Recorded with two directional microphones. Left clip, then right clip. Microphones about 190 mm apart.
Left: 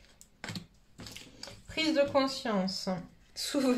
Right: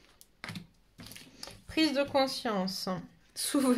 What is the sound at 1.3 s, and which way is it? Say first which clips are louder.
Speech: right 3 dB; 50° right (ahead or behind).